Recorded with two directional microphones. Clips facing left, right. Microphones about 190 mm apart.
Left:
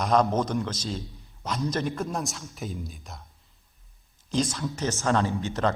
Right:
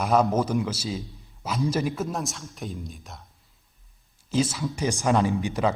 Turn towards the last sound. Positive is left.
turn(degrees=-15)  # may be behind; listen again after turning